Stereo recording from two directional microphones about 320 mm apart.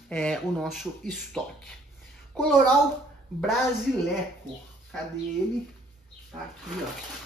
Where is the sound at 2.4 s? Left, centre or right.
Centre.